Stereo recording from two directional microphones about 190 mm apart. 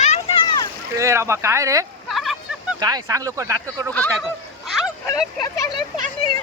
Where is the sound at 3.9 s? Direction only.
10° left (ahead or behind).